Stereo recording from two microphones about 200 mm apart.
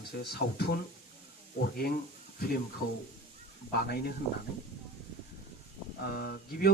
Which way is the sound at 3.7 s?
50° left (ahead or behind).